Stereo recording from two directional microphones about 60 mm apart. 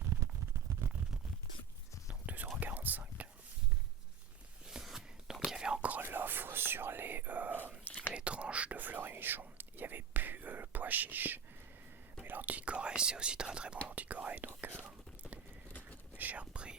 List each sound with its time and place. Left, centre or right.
0.7 s a sound: right
2.2 s whispering: right
4.7 s a sound: centre
5.5 s whispering: centre
6.0 s whispering: right
12.2 s speech: right
16.1 s whispering: right